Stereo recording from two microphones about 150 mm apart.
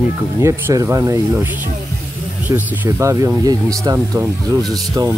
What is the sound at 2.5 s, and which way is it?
Speech, 15° right (ahead or behind).